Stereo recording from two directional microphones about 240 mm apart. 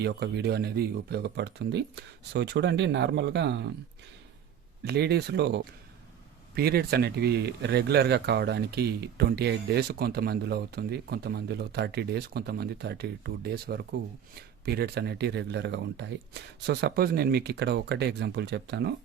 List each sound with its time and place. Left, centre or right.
0.0 s speech: right
4.9 s speech: right